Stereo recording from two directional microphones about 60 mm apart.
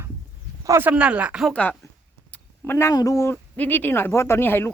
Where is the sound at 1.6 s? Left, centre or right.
Left.